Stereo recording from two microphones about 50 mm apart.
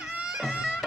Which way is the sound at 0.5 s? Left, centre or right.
Right.